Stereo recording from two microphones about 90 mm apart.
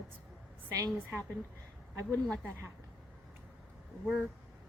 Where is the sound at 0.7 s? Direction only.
40° right (ahead or behind).